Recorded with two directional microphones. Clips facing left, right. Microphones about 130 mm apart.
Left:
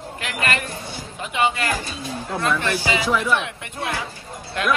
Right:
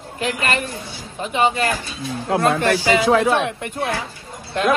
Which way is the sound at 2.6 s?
50° right (ahead or behind).